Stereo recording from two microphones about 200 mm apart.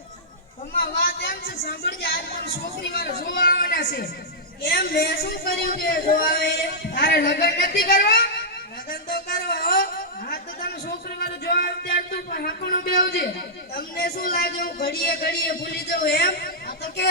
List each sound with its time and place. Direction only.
0.8 s a man's voice: 50° left (ahead or behind)
8.9 s a sound: 50° left (ahead or behind)
13.7 s a man's voice: 50° left (ahead or behind)